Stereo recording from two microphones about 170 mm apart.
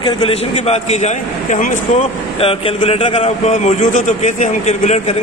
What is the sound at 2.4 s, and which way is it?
A man's voice, 35° left (ahead or behind).